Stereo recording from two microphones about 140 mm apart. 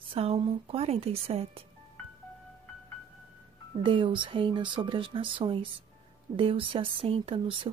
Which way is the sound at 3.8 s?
35° right (ahead or behind).